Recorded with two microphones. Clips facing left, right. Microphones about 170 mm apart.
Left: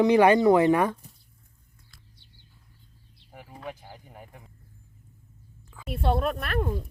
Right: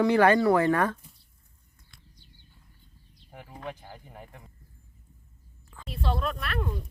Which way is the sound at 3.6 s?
5° left (ahead or behind).